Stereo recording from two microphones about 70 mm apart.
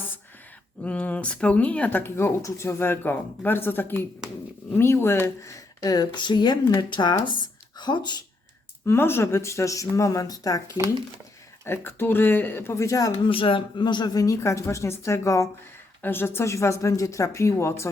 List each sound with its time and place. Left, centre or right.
0.9 s speech: centre; by 5.3 s left
5.4 s speech: left
6.7 s speech: left
7.8 s speech: left
8.9 s speech: left
11.6 s speech: left
12.7 s speech: left
13.7 s speech: left
14.3 s speech: left
16.0 s speech: left